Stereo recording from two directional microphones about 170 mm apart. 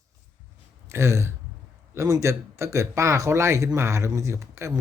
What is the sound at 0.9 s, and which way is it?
Speech, 15° right (ahead or behind).